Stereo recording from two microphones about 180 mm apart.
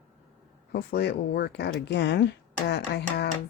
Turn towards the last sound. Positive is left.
turn(degrees=65)  # may be behind; listen again after turning